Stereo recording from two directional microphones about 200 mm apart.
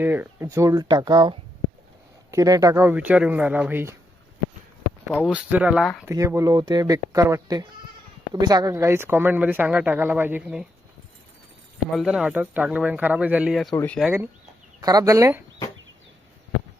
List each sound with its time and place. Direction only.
0.0 s speech: 10° right (ahead or behind)
5.3 s speech: 5° right (ahead or behind)
11.9 s speech: 5° right (ahead or behind)
14.0 s speech: 10° right (ahead or behind)